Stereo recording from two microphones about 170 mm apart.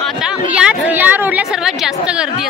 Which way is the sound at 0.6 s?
5° right (ahead or behind).